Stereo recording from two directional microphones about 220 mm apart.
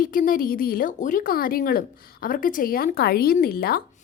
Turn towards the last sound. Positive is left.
turn(degrees=45)  # may be behind; listen again after turning